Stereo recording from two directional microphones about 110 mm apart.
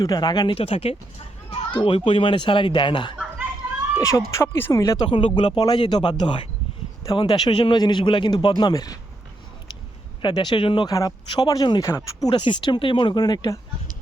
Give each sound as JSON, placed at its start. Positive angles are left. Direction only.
{"t": 0.0, "sound": "speech", "side_deg": 40}
{"t": 0.5, "sound": "speech", "side_deg": 65}
{"t": 1.7, "sound": "speech", "side_deg": 50}
{"t": 3.9, "sound": "speech", "side_deg": 30}
{"t": 5.0, "sound": "speech", "side_deg": 50}
{"t": 10.2, "sound": "speech", "side_deg": 45}
{"t": 10.8, "sound": "speech", "side_deg": 30}
{"t": 12.3, "sound": "speech", "side_deg": 45}